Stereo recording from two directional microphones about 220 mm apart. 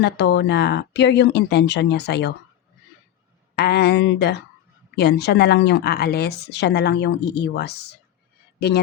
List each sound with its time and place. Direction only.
0.0 s speech: 50° left (ahead or behind)
3.5 s speech: 50° left (ahead or behind)